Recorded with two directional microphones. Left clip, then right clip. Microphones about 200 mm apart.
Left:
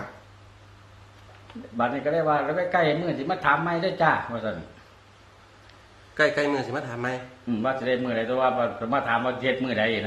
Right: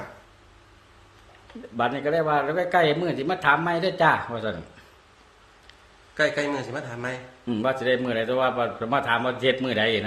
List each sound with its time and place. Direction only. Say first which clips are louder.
1.7 s speech: right 1 dB; 60° right (ahead or behind)
6.1 s a man's voice: left 1 dB; 15° left (ahead or behind)
7.6 s speech: right 2 dB; 60° right (ahead or behind)